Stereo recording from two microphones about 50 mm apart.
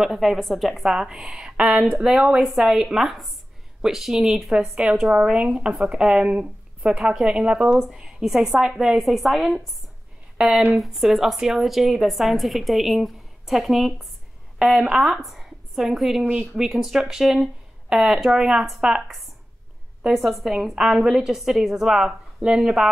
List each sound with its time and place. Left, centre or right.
0.0 s a woman's voice: centre
2.4 s a woman's voice: centre; by 7.8 s right
7.8 s a woman's voice: centre
10.3 s speech: centre
10.8 s a woman's voice: centre
16.3 s speech: right
16.6 s a woman's voice: centre
20.2 s a woman's voice: centre